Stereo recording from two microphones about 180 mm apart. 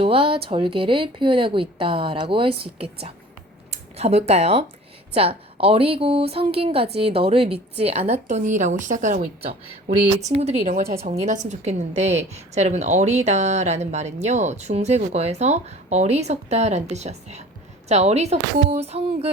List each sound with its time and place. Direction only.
0.0 s a woman's voice: 30° right (ahead or behind)